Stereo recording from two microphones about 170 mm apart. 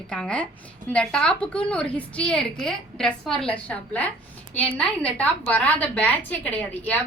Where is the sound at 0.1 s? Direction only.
5° left (ahead or behind).